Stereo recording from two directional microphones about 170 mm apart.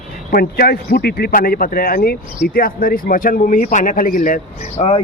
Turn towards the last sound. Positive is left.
turn(degrees=40)  # may be behind; listen again after turning